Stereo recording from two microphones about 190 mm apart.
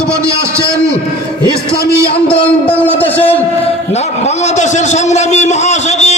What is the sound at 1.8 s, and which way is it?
Speech, 15° right (ahead or behind).